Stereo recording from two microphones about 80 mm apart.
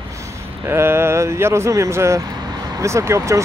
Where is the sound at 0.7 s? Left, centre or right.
Right.